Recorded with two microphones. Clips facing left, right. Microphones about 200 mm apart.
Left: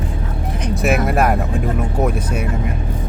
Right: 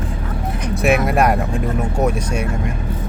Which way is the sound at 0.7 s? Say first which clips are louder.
Right 2 dB; centre (ahead or behind).